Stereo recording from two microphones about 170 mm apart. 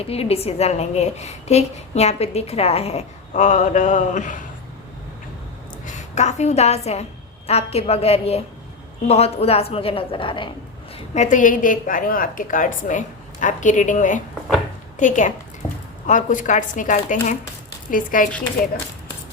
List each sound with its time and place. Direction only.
0.0 s a woman's voice: 35° left (ahead or behind)
5.8 s a woman's voice: 45° left (ahead or behind)
10.9 s a woman's voice: 45° left (ahead or behind)